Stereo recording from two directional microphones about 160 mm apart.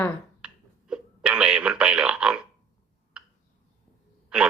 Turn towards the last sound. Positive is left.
turn(degrees=-5)  # may be behind; listen again after turning